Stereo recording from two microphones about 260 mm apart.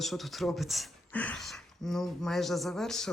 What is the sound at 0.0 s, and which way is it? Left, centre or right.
Speech, centre.